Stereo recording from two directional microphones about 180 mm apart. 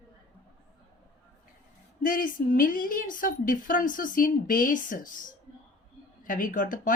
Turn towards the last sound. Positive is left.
turn(degrees=50)  # may be behind; listen again after turning